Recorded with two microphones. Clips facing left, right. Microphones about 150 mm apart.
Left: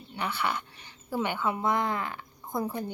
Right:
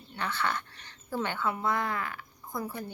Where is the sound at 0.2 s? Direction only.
15° left (ahead or behind).